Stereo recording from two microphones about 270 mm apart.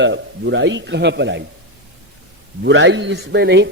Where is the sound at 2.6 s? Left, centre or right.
Right.